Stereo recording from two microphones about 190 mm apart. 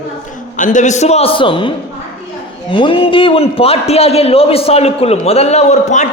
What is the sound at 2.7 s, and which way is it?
A man's voice, 30° left (ahead or behind).